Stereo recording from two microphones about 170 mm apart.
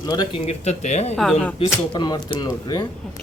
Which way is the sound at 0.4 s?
40° left (ahead or behind).